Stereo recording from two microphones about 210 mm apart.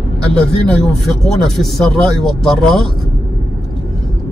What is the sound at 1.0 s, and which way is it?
A man's voice, centre (ahead or behind).